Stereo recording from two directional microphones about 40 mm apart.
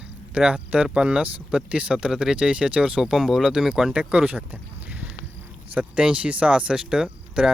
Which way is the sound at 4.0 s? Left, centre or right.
Right.